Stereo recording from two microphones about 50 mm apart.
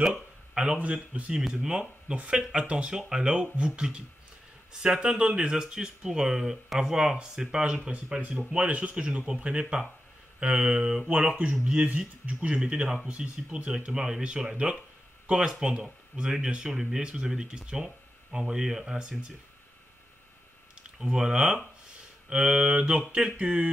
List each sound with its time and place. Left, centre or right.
0.6 s speech: right
1.5 s speech: centre
13.1 s speech: right
21.0 s speech: centre
23.4 s speech: right